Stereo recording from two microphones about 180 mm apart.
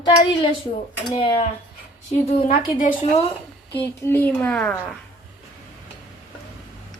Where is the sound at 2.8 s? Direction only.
35° left (ahead or behind).